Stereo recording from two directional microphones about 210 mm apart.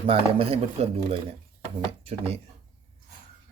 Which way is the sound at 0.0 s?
25° right (ahead or behind).